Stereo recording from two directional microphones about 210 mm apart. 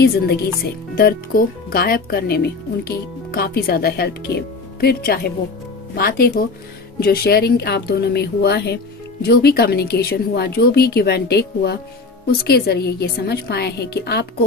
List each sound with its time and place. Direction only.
0.9 s speech: 45° left (ahead or behind)